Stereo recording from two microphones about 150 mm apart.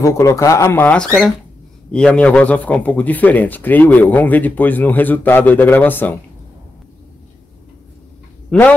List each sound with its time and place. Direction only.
0.0 s a man's voice: 20° left (ahead or behind)
8.5 s speech: 10° left (ahead or behind)